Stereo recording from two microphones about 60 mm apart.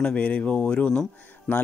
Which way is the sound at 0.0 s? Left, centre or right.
Left.